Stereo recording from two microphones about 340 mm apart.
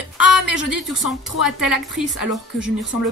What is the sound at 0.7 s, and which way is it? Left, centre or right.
Speech, centre.